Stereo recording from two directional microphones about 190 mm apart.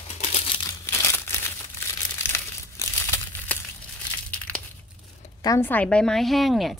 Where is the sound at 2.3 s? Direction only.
15° left (ahead or behind).